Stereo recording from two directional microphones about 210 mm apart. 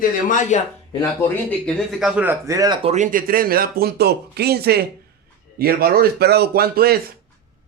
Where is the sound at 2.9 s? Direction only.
40° right (ahead or behind).